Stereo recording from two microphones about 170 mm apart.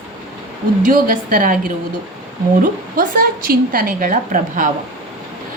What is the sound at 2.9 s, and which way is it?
A woman's voice, 55° right (ahead or behind).